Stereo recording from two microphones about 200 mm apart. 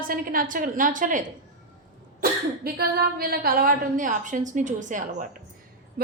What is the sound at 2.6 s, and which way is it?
A woman's voice, 50° right (ahead or behind).